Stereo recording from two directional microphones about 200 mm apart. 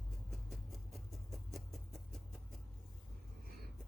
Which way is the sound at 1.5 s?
Centre (ahead or behind).